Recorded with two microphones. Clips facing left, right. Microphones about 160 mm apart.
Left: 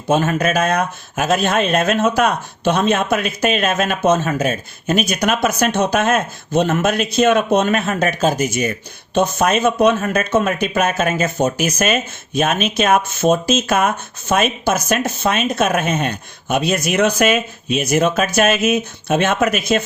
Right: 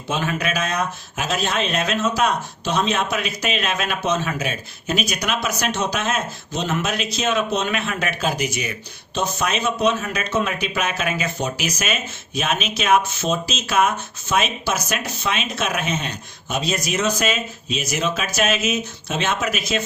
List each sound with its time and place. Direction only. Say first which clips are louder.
0.1 s speech: left 7 dB; 45° left (ahead or behind)